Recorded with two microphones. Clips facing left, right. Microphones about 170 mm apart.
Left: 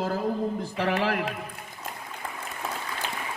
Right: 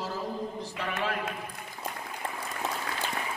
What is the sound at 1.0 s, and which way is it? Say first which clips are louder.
Speech: left 5 dB; 75° left (ahead or behind).